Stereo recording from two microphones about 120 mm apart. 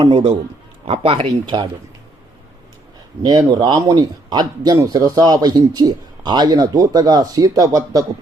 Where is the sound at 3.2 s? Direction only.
35° right (ahead or behind).